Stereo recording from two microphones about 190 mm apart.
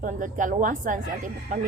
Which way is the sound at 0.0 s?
45° right (ahead or behind).